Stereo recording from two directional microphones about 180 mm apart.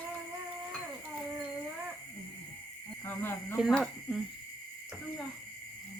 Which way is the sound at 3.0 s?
10° left (ahead or behind).